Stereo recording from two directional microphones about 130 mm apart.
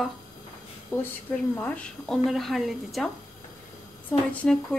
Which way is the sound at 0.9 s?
20° left (ahead or behind).